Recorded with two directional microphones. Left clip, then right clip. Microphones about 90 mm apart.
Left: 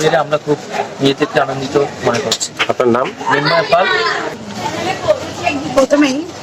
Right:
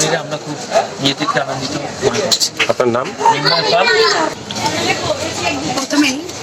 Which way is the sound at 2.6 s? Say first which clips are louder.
Left 5 dB; 25° left (ahead or behind).